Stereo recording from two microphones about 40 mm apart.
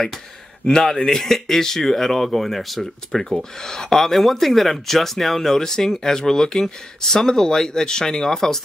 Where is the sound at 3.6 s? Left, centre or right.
Centre.